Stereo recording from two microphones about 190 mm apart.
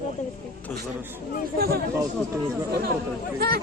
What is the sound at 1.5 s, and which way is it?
Speech, 55° right (ahead or behind).